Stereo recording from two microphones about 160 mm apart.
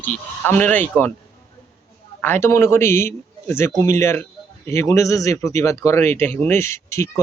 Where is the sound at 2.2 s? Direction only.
15° left (ahead or behind).